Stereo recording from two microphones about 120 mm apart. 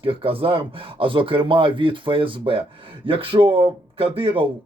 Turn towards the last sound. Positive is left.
turn(degrees=-45)  # may be behind; listen again after turning